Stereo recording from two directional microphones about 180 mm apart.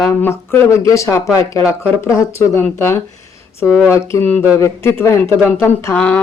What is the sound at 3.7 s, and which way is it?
Speech, centre (ahead or behind).